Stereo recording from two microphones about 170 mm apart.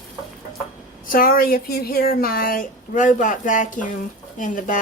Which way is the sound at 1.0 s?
55° left (ahead or behind).